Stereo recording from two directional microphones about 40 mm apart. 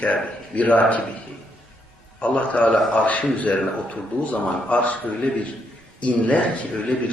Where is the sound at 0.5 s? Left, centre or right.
Left.